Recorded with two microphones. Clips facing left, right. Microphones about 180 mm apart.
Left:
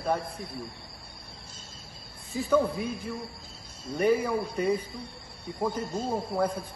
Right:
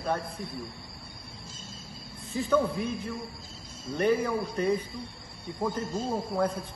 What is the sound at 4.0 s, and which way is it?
Speech, 10° left (ahead or behind).